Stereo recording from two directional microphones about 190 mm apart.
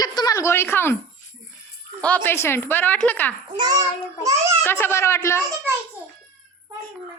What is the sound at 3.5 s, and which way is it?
Child singing, 20° right (ahead or behind).